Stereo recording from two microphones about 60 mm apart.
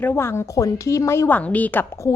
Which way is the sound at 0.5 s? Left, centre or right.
Left.